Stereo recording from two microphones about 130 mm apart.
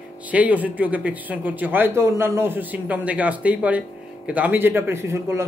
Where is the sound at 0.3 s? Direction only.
10° right (ahead or behind).